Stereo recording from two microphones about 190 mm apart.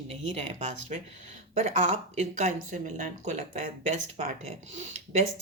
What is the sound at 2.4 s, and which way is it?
A woman's voice, 45° right (ahead or behind).